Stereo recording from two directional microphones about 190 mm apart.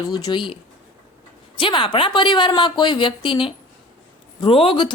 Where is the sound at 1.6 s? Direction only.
25° left (ahead or behind).